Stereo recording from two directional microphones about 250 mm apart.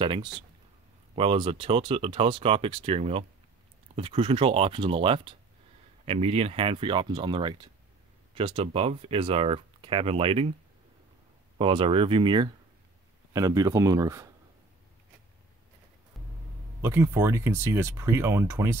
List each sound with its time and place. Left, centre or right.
0.0 s speech: centre
11.5 s speech: right
16.8 s speech: centre